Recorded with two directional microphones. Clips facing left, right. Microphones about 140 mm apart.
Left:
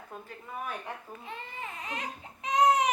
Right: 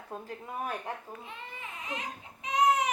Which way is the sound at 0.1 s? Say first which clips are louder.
Right 4 dB; 30° right (ahead or behind).